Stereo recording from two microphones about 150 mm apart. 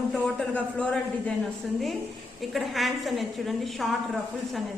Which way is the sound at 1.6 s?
Centre (ahead or behind).